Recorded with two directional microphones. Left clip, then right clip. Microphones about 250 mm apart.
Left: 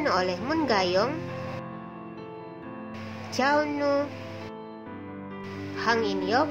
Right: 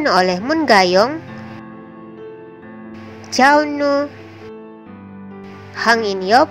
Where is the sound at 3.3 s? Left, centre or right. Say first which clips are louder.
Right 12 dB; right.